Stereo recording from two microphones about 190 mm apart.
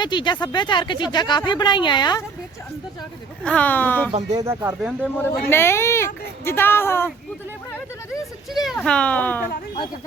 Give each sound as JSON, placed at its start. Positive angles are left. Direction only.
{"t": 0.0, "sound": "a woman's voice", "side_deg": 25}
{"t": 3.4, "sound": "a child's voice", "side_deg": 5}
{"t": 4.3, "sound": "speech", "side_deg": -20}
{"t": 4.6, "sound": "speech", "side_deg": -5}
{"t": 5.5, "sound": "a child's voice", "side_deg": 10}
{"t": 8.6, "sound": "a child's voice", "side_deg": 5}